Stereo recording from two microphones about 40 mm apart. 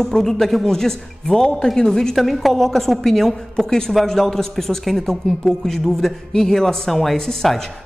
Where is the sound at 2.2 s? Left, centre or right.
Centre.